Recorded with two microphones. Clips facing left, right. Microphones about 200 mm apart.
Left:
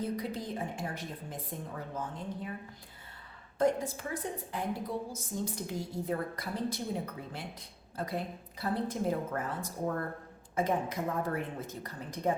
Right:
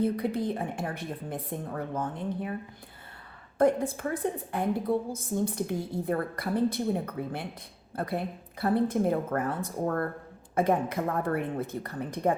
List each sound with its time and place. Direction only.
0.0 s a woman's voice: 60° right (ahead or behind)
3.6 s a woman's voice: 55° right (ahead or behind)